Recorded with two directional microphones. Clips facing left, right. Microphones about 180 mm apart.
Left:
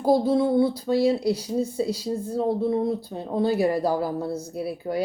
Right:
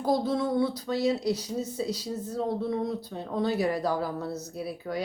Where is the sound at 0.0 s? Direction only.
30° left (ahead or behind).